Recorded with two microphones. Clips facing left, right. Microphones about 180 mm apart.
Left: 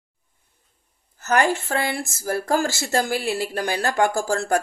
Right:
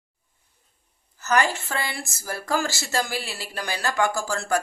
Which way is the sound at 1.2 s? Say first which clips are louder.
Left 3 dB; 50° left (ahead or behind).